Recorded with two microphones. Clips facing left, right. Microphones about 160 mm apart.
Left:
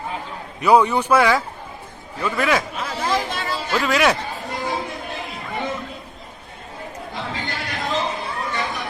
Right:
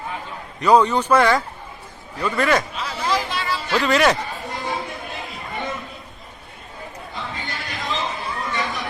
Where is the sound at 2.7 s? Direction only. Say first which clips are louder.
Left 1 dB; 50° left (ahead or behind).